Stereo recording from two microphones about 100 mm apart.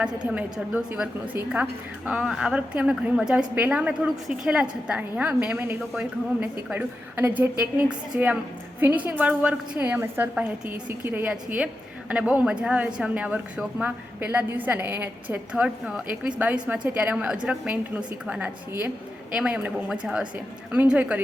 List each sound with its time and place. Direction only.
0.0 s a woman's voice: 10° right (ahead or behind)
15.5 s a woman's voice: 10° right (ahead or behind)